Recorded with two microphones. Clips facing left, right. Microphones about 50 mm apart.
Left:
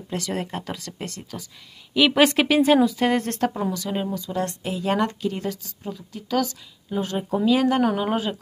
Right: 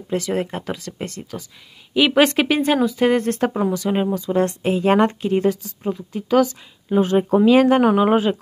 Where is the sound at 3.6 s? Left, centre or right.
Right.